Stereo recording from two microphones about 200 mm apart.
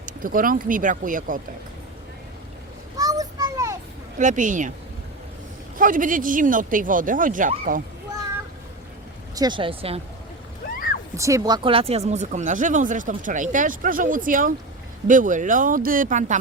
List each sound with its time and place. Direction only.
0.0 s speech: 45° right (ahead or behind)
3.0 s children playing: 20° right (ahead or behind)
4.2 s speech: 40° right (ahead or behind)
5.7 s speech: 40° right (ahead or behind)
9.3 s speech: 20° right (ahead or behind)
11.2 s speech: 15° right (ahead or behind); by 16.4 s 40° right (ahead or behind)